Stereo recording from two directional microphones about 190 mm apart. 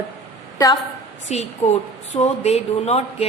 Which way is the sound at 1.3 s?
35° left (ahead or behind).